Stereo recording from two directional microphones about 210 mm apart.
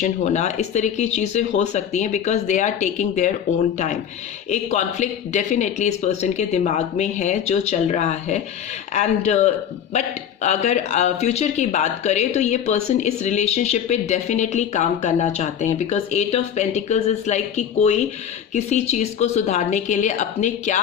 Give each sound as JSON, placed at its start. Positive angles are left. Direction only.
{"t": 0.0, "sound": "speech", "side_deg": 35}
{"t": 4.4, "sound": "speech", "side_deg": 35}